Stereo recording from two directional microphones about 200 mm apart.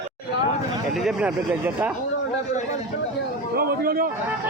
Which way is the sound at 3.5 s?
45° right (ahead or behind).